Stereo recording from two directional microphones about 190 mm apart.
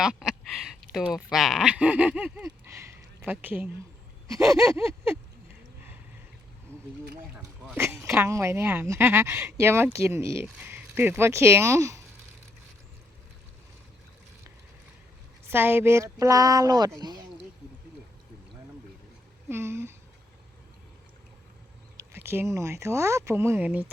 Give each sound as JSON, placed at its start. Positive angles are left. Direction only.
{"t": 0.0, "sound": "speech", "side_deg": -5}
{"t": 4.4, "sound": "a sound", "side_deg": 0}
{"t": 4.7, "sound": "speech", "side_deg": -15}
{"t": 7.3, "sound": "speech", "side_deg": 0}
{"t": 7.8, "sound": "speech", "side_deg": -15}
{"t": 15.4, "sound": "speech", "side_deg": -10}
{"t": 19.5, "sound": "speech", "side_deg": -15}
{"t": 21.9, "sound": "speech", "side_deg": -15}